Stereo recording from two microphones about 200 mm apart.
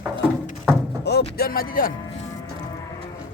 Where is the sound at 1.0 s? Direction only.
55° left (ahead or behind).